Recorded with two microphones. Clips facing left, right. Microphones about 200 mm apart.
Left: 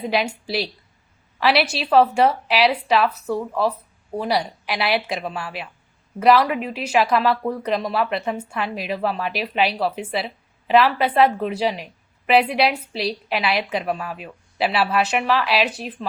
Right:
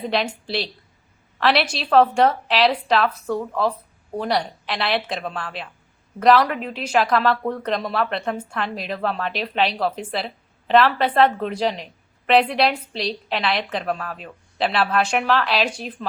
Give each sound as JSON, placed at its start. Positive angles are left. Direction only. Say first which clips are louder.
{"t": 0.0, "sound": "speech", "louder": "left 1 dB", "side_deg": 10}